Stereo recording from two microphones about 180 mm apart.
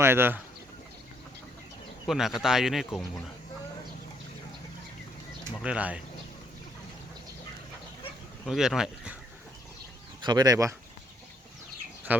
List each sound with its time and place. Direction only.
0.0 s speech: 10° right (ahead or behind)
2.0 s speech: centre (ahead or behind)
5.6 s speech: 5° right (ahead or behind)
8.4 s speech: centre (ahead or behind)
10.2 s speech: 20° right (ahead or behind)